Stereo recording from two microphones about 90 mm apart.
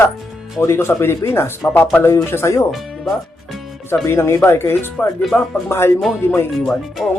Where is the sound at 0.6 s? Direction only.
30° left (ahead or behind).